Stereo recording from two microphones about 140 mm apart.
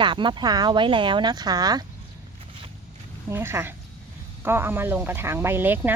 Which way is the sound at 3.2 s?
15° right (ahead or behind).